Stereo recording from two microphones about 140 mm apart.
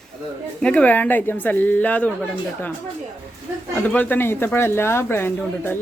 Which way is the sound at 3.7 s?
10° left (ahead or behind).